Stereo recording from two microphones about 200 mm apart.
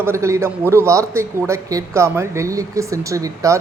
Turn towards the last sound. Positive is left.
turn(degrees=-15)  # may be behind; listen again after turning